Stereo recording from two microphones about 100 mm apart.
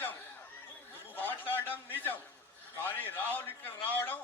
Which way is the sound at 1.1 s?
20° left (ahead or behind).